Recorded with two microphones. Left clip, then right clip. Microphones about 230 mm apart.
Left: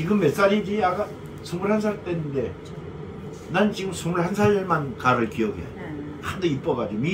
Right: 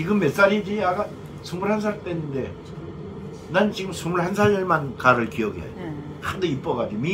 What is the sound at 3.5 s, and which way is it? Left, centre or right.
A man's voice, centre.